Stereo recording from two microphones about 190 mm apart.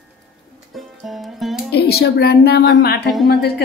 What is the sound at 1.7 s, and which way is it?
A woman's voice, 60° left (ahead or behind).